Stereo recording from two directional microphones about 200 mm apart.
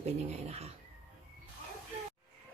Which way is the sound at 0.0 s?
30° right (ahead or behind).